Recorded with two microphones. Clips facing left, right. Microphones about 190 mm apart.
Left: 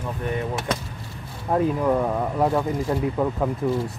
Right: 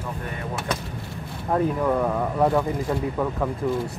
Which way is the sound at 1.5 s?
10° left (ahead or behind).